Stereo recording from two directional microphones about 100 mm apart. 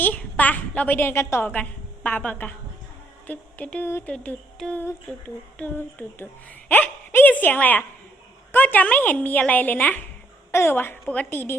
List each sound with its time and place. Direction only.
0.0 s a woman's voice: 15° left (ahead or behind)